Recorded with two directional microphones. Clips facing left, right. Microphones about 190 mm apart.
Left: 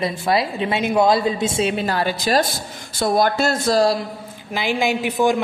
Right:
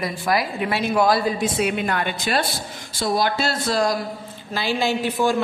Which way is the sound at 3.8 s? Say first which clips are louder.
Left 2 dB; 30° left (ahead or behind).